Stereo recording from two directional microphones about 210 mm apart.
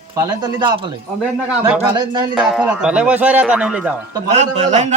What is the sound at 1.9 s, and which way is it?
Speech, 20° right (ahead or behind).